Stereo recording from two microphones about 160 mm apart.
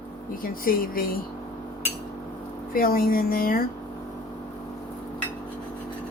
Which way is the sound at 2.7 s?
65° left (ahead or behind).